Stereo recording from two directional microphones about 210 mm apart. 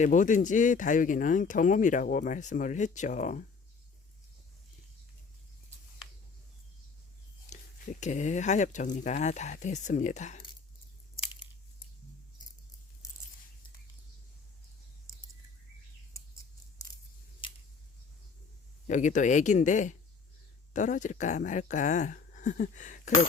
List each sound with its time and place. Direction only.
0.0 s speech: 35° left (ahead or behind)
7.5 s speech: 35° left (ahead or behind)
18.9 s speech: 35° left (ahead or behind)